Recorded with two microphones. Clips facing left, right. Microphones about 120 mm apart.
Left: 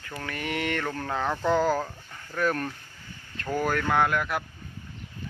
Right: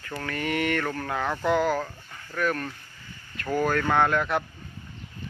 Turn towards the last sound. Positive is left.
turn(degrees=5)  # may be behind; listen again after turning